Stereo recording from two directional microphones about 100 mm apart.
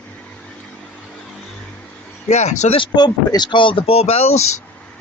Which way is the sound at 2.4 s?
75° left (ahead or behind).